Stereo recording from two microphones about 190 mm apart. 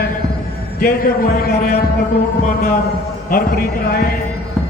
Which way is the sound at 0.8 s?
50° left (ahead or behind).